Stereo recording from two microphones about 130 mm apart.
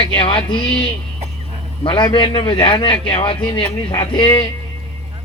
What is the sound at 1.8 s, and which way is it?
A man's voice, 40° left (ahead or behind).